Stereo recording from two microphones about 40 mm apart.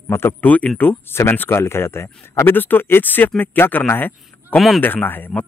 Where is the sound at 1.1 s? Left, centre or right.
Left.